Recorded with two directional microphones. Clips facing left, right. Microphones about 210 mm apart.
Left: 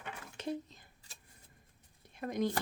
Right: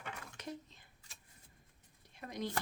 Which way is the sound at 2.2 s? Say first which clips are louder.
Left 8 dB; 50° left (ahead or behind).